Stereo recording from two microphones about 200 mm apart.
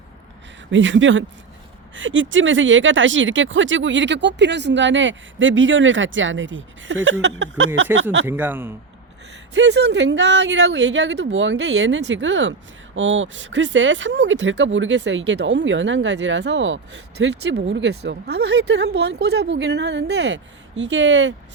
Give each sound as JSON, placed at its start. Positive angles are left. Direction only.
{"t": 0.7, "sound": "speech", "side_deg": -70}
{"t": 7.9, "sound": "speech", "side_deg": -10}
{"t": 9.6, "sound": "speech", "side_deg": -60}